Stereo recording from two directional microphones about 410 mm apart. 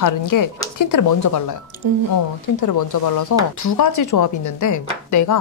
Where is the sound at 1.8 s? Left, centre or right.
Right.